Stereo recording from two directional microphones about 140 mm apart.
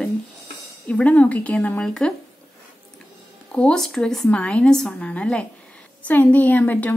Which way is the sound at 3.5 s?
5° left (ahead or behind).